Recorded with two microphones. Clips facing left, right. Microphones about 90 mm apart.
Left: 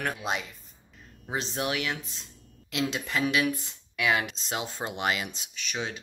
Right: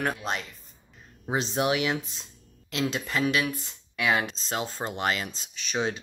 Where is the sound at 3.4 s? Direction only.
25° right (ahead or behind).